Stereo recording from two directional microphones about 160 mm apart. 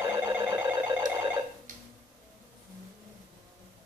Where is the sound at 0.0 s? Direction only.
15° right (ahead or behind).